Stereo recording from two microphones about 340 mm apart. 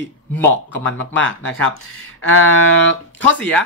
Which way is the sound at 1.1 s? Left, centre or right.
Left.